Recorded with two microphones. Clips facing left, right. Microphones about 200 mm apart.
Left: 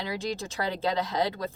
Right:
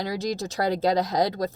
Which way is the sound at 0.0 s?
40° right (ahead or behind).